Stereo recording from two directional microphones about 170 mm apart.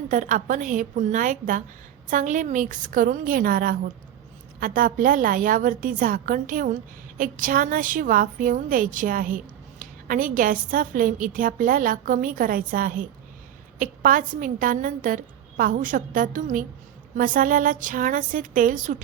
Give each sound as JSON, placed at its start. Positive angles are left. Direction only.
{"t": 0.1, "sound": "a woman's voice", "side_deg": -50}